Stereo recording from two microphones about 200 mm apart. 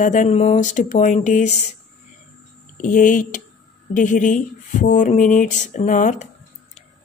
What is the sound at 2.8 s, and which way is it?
Speech, 40° left (ahead or behind).